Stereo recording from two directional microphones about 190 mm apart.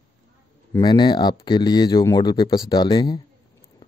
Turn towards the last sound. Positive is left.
turn(degrees=25)  # may be behind; listen again after turning